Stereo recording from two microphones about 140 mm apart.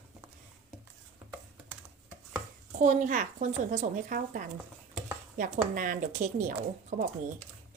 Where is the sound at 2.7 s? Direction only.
65° right (ahead or behind).